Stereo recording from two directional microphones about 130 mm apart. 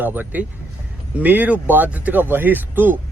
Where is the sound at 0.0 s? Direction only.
15° right (ahead or behind).